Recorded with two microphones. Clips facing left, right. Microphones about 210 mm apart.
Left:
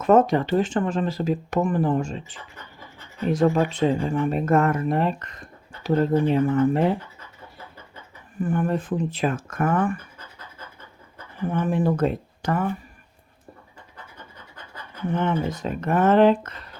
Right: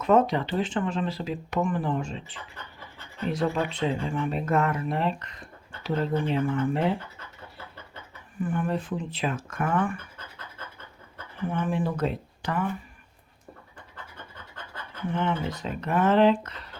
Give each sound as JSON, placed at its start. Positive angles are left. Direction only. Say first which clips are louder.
{"t": 0.0, "sound": "speech", "louder": "left 4 dB", "side_deg": 45}
{"t": 8.4, "sound": "speech", "louder": "left 4 dB", "side_deg": 40}
{"t": 11.4, "sound": "speech", "louder": "left 5 dB", "side_deg": 40}
{"t": 15.1, "sound": "speech", "louder": "left 4 dB", "side_deg": 45}